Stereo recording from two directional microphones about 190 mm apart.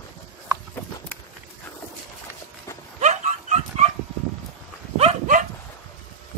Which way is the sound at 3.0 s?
35° right (ahead or behind).